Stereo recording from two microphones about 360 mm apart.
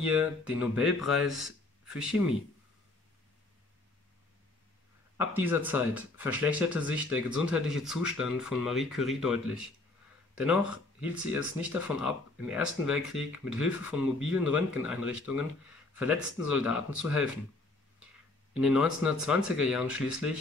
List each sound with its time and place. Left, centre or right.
0.0 s speech: centre
5.1 s speech: centre
18.5 s speech: centre